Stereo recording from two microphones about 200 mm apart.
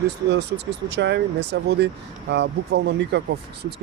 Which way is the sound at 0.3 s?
60° right (ahead or behind).